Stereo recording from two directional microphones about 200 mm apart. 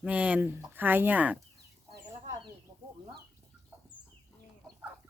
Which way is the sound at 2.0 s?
20° right (ahead or behind).